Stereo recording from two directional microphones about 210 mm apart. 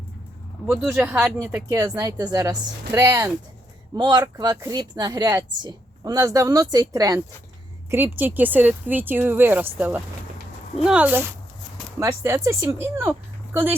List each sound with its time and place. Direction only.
0.7 s a woman's voice: 5° right (ahead or behind)